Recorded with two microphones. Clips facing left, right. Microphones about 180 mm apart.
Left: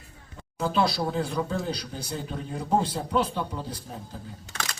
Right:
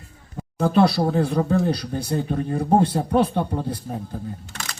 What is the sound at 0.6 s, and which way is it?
Speech, 60° right (ahead or behind).